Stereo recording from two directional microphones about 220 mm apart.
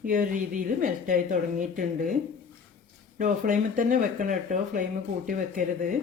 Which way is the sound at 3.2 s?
40° right (ahead or behind).